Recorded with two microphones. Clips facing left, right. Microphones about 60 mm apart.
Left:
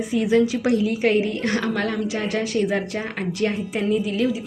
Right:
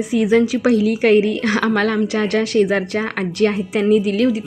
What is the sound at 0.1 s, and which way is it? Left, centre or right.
A woman's voice, right.